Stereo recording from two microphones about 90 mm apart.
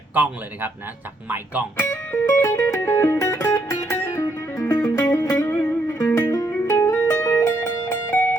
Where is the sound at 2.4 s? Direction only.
30° left (ahead or behind).